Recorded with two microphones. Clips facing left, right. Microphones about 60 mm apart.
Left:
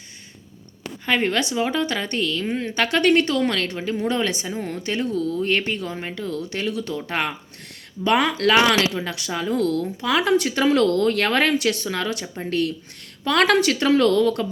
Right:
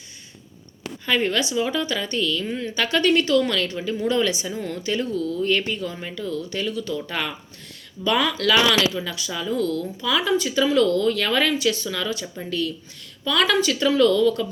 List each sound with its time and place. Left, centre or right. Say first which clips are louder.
1.0 s a woman's voice: left 1 dB; left
4.5 s a woman's voice: left 1 dB; left
4.8 s a woman's voice: left 1 dB; left
5.6 s speech: left 1 dB; left
5.9 s a woman's voice: left 1 dB; left
6.4 s a woman's voice: left 1 dB; left
9.0 s speech: left 2 dB; left